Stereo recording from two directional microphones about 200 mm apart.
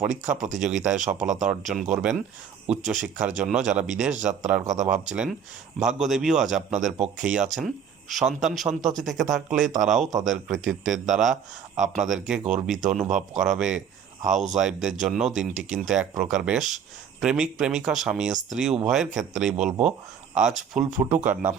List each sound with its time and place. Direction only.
0.0 s a man's voice: 5° right (ahead or behind)
14.3 s speech: 35° right (ahead or behind)
14.6 s a man's voice: 5° right (ahead or behind)